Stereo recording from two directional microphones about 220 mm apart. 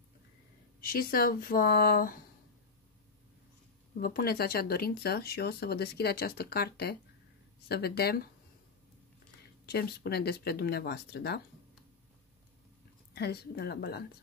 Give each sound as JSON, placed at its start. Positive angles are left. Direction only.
{"t": 0.7, "sound": "speech", "side_deg": 40}
{"t": 4.0, "sound": "speech", "side_deg": 45}
{"t": 9.7, "sound": "speech", "side_deg": 45}
{"t": 13.1, "sound": "speech", "side_deg": 45}